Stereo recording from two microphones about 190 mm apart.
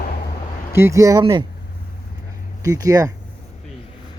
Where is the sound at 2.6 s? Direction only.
20° right (ahead or behind).